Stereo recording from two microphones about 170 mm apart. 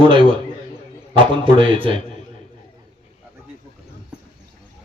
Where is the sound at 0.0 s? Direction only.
30° right (ahead or behind).